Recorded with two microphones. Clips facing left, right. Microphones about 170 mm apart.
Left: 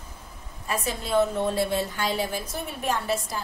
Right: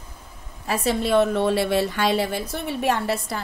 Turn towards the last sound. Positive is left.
turn(degrees=-65)  # may be behind; listen again after turning